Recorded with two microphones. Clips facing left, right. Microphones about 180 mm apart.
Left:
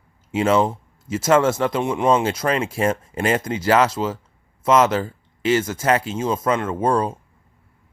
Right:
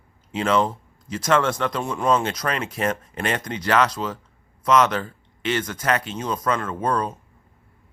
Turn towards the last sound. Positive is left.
turn(degrees=30)  # may be behind; listen again after turning